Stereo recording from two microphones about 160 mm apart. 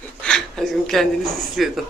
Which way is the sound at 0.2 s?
5° left (ahead or behind).